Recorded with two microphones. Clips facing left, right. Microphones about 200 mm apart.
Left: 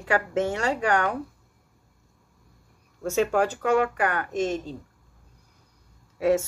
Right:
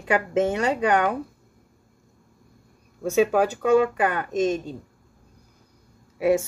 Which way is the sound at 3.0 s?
15° right (ahead or behind).